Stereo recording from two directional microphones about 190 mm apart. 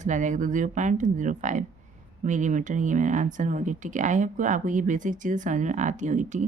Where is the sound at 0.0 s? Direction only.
40° right (ahead or behind).